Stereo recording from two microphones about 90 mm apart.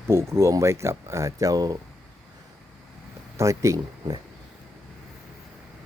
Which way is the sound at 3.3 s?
35° right (ahead or behind).